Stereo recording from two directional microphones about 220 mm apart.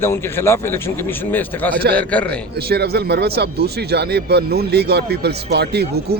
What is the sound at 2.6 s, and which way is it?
Speech, 45° right (ahead or behind).